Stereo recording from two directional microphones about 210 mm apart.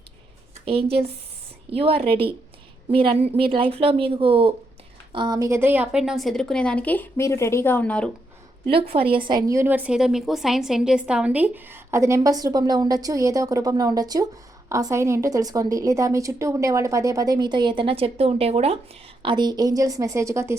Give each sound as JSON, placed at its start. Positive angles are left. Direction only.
{"t": 0.6, "sound": "a woman's voice", "side_deg": -25}
{"t": 8.6, "sound": "a woman's voice", "side_deg": -25}